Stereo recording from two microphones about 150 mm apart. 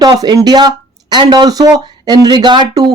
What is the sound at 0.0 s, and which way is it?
Speech, 25° right (ahead or behind).